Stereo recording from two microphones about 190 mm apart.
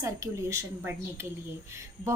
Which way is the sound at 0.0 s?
15° right (ahead or behind).